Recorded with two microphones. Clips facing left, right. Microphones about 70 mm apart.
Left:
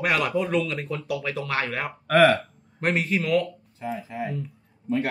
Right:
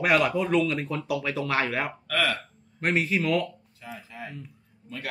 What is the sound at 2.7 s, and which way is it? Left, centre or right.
Speech, centre.